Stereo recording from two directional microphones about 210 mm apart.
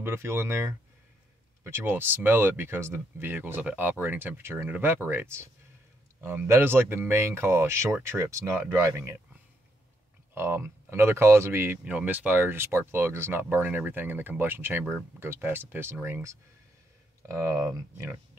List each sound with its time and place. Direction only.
0.0 s speech: 10° right (ahead or behind)
10.3 s speech: 10° right (ahead or behind)